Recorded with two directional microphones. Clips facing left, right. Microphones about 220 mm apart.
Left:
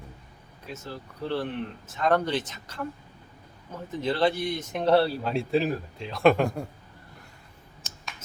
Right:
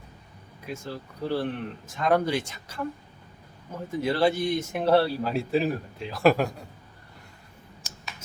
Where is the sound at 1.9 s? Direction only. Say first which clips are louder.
Right 1 dB; 10° right (ahead or behind).